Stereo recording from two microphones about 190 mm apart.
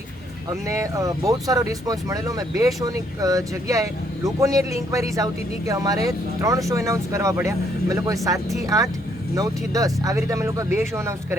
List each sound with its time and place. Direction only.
0.7 s speech: 15° right (ahead or behind)